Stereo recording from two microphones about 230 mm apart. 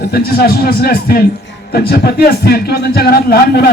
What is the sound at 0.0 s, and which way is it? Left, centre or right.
A man's voice, left.